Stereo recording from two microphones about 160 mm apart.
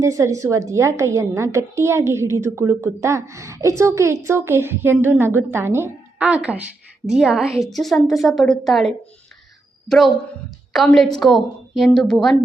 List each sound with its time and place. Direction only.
0.0 s a woman's voice: 20° right (ahead or behind); by 9.0 s centre (ahead or behind)
10.7 s a woman's voice: centre (ahead or behind)